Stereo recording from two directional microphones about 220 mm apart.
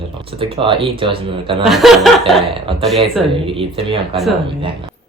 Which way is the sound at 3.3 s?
25° right (ahead or behind).